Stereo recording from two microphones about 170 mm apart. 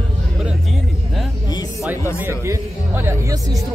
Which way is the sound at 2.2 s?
15° right (ahead or behind).